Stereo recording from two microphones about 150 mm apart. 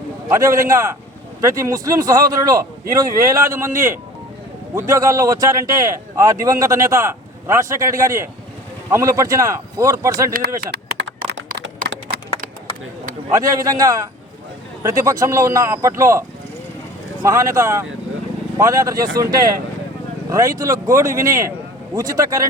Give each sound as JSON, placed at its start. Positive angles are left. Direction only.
{"t": 0.3, "sound": "speech", "side_deg": -20}
{"t": 10.6, "sound": "a sound", "side_deg": -90}
{"t": 13.3, "sound": "speech", "side_deg": -25}
{"t": 17.2, "sound": "speech", "side_deg": -20}